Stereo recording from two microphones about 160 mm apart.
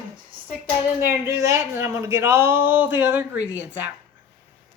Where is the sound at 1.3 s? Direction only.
20° right (ahead or behind).